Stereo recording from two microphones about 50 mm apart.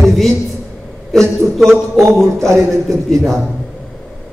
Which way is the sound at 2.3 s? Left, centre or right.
Right.